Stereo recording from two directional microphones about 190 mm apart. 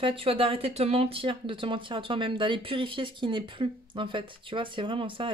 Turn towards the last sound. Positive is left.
turn(degrees=-25)  # may be behind; listen again after turning